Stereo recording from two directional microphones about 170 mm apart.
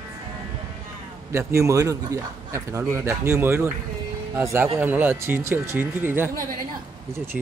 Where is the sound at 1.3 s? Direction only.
15° right (ahead or behind).